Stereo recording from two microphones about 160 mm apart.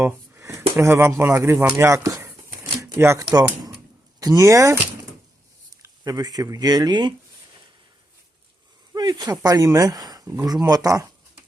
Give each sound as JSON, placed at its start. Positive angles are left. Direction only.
{"t": 0.0, "sound": "speech", "side_deg": -15}
{"t": 8.9, "sound": "speech", "side_deg": -25}